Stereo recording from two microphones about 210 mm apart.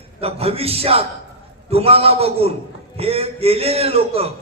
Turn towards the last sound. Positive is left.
turn(degrees=-30)  # may be behind; listen again after turning